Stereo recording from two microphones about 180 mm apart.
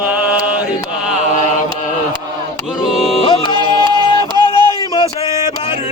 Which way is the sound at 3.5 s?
25° right (ahead or behind).